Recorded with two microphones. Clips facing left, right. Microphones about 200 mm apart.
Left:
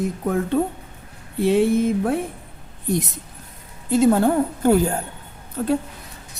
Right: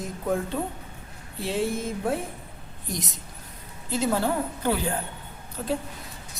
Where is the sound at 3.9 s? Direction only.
50° left (ahead or behind).